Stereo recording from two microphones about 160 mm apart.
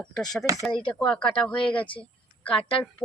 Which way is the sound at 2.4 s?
35° left (ahead or behind).